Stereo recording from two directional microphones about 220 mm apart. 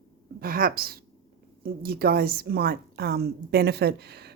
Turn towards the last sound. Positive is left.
turn(degrees=-45)  # may be behind; listen again after turning